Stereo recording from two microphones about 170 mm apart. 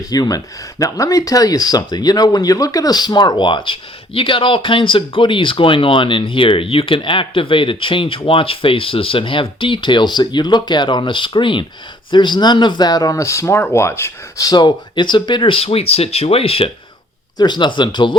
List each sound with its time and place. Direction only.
0.0 s speech: 20° left (ahead or behind)